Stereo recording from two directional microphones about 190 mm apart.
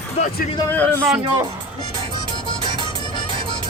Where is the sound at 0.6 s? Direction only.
10° left (ahead or behind).